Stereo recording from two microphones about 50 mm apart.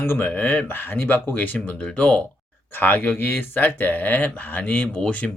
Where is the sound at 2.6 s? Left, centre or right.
Left.